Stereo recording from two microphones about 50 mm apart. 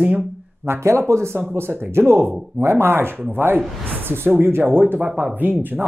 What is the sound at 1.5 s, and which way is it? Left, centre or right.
Speech, right.